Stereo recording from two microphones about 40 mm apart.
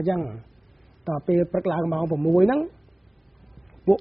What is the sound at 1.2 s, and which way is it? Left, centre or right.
A man's voice, centre.